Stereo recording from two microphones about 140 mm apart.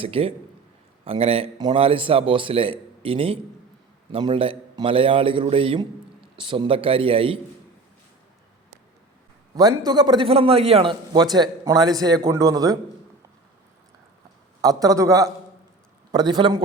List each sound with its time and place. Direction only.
0.0 s a man's voice: 45° right (ahead or behind)
9.6 s a man's voice: 30° right (ahead or behind)
14.6 s a man's voice: 25° right (ahead or behind)